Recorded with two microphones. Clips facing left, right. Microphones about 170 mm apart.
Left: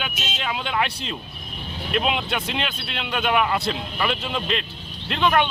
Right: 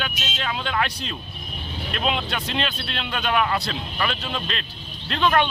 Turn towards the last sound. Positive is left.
turn(degrees=15)  # may be behind; listen again after turning